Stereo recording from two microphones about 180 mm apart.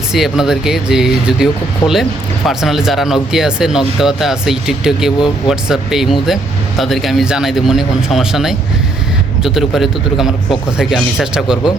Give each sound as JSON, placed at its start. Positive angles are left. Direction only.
{"t": 0.1, "sound": "speech", "side_deg": 0}
{"t": 1.8, "sound": "speech", "side_deg": 20}
{"t": 2.5, "sound": "speech", "side_deg": 0}